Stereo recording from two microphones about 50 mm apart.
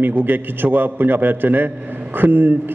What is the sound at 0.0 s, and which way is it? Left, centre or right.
A man's voice, right.